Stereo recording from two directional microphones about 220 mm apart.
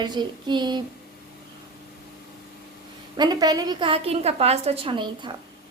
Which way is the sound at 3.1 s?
20° right (ahead or behind).